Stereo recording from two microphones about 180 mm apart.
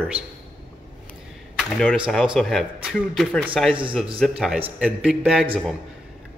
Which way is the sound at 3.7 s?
30° right (ahead or behind).